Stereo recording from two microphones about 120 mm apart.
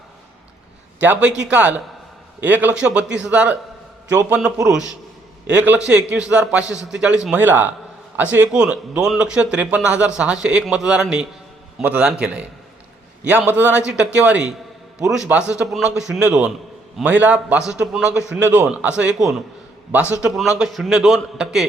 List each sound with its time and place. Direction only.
0.9 s a man's voice: 15° right (ahead or behind)
5.5 s a man's voice: 10° right (ahead or behind)
20.2 s a man's voice: 5° right (ahead or behind)